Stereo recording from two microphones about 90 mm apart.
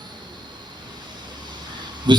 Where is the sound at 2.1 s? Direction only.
55° right (ahead or behind).